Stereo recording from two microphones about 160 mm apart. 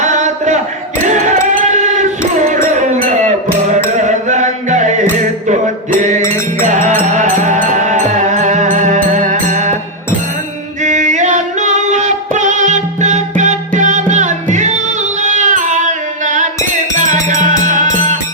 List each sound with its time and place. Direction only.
0.0 s chant: 50° right (ahead or behind)
1.7 s a sound: 50° right (ahead or behind)
2.7 s music: 50° right (ahead or behind)
3.9 s chant: 50° right (ahead or behind)
6.0 s music: 50° right (ahead or behind)
10.8 s music: 50° right (ahead or behind)